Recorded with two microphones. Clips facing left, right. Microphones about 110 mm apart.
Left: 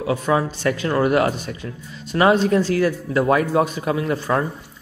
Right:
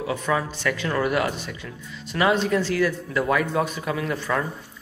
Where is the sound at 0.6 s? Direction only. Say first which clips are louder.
Left 5 dB; 35° left (ahead or behind).